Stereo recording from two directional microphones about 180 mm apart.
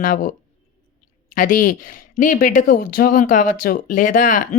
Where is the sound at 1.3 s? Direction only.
50° left (ahead or behind).